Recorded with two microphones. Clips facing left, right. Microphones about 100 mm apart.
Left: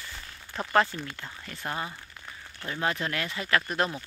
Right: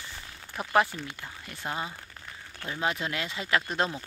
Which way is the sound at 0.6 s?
15° right (ahead or behind).